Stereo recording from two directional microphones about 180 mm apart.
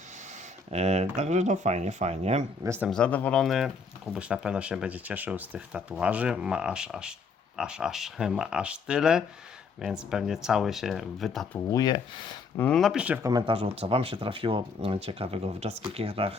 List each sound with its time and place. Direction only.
0.7 s speech: 35° right (ahead or behind)
2.6 s speech: 15° right (ahead or behind)
2.9 s speech: 5° left (ahead or behind)
11.7 s speech: 20° left (ahead or behind)
12.5 s speech: 5° left (ahead or behind)
13.2 s speech: 25° right (ahead or behind)